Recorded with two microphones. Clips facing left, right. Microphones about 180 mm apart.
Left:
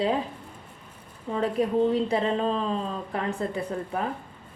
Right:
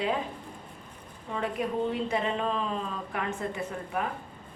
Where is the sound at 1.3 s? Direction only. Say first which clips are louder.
Left 6 dB; 30° left (ahead or behind).